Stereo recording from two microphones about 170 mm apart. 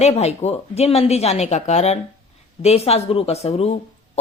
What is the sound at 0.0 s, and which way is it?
A woman's voice, 40° left (ahead or behind).